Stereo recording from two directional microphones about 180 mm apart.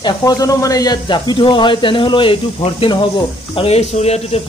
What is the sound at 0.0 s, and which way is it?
Speech, 20° left (ahead or behind).